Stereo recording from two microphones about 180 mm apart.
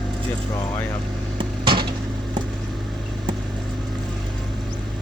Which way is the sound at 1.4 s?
25° right (ahead or behind).